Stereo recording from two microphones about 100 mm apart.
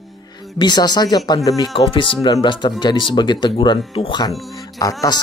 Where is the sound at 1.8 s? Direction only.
60° left (ahead or behind).